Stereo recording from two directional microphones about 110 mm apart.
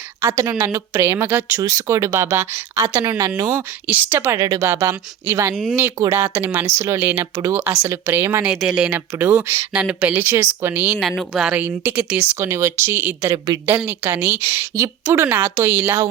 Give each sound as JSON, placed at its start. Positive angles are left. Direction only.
{"t": 0.5, "sound": "speech", "side_deg": -20}
{"t": 3.8, "sound": "a woman's voice", "side_deg": -15}
{"t": 4.4, "sound": "speech", "side_deg": -30}
{"t": 4.7, "sound": "a woman's voice", "side_deg": -20}
{"t": 8.4, "sound": "a woman's voice", "side_deg": -5}
{"t": 8.9, "sound": "speech", "side_deg": -20}
{"t": 9.7, "sound": "speech", "side_deg": -10}
{"t": 11.0, "sound": "speech", "side_deg": 0}
{"t": 11.5, "sound": "a woman's voice", "side_deg": -20}